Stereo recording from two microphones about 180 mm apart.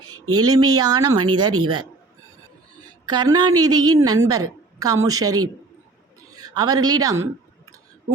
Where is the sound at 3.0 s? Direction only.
20° right (ahead or behind).